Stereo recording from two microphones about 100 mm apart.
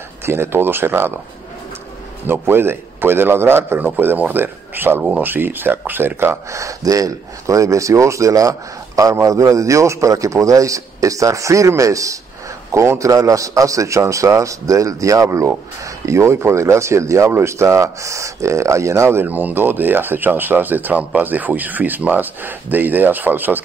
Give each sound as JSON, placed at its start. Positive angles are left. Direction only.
{"t": 0.2, "sound": "speech", "side_deg": -25}
{"t": 2.2, "sound": "a man's voice", "side_deg": -20}
{"t": 19.2, "sound": "speech", "side_deg": -15}